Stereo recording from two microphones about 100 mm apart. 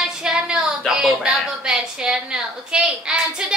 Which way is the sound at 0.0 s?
5° right (ahead or behind).